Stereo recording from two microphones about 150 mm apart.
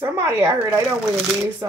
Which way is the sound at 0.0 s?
15° right (ahead or behind).